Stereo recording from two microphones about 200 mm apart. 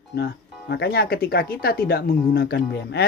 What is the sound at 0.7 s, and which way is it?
Speech, 55° left (ahead or behind).